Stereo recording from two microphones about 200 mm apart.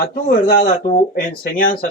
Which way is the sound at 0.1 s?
45° left (ahead or behind).